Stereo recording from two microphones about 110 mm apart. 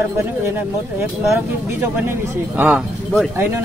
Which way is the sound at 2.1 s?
15° right (ahead or behind).